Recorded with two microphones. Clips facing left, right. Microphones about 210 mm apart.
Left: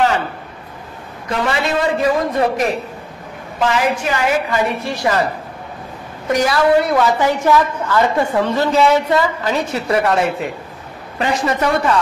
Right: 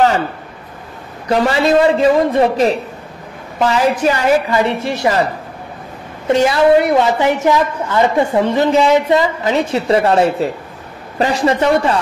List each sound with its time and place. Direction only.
1.3 s a woman's voice: 35° right (ahead or behind)
4.0 s speech: 35° right (ahead or behind)
4.7 s a woman's voice: 25° right (ahead or behind)
6.2 s a woman's voice: 25° right (ahead or behind)